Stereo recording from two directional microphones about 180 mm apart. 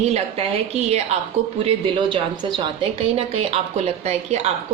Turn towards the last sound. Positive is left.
turn(degrees=-40)  # may be behind; listen again after turning